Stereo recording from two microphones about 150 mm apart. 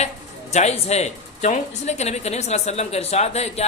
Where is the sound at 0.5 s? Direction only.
45° left (ahead or behind).